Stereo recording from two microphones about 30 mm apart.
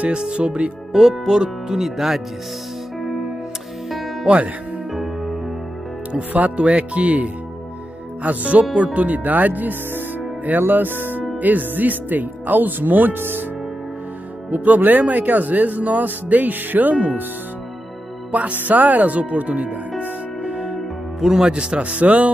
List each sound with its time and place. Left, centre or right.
0.1 s speech: right
0.9 s speech: centre
3.0 s music: centre
6.5 s music: right
8.2 s speech: right
11.4 s speech: right
14.5 s speech: right
16.9 s speech: right
18.3 s speech: right
20.4 s music: right
20.7 s music: centre
21.5 s speech: right
21.9 s music: right